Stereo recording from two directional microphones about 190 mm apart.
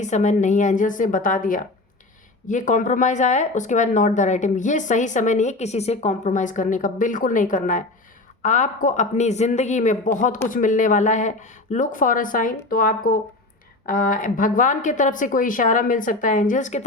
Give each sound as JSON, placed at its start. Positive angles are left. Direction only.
{"t": 0.0, "sound": "a woman's voice", "side_deg": 40}